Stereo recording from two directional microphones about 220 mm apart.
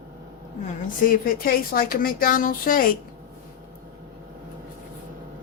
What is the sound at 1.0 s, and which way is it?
Speech, 40° left (ahead or behind).